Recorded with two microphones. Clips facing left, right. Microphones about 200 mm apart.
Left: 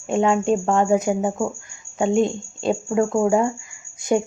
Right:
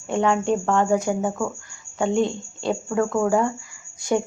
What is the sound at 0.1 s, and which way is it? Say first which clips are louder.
Speech: left 2 dB; 20° left (ahead or behind).